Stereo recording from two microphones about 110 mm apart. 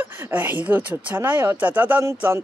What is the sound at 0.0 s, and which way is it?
Speech, 15° right (ahead or behind).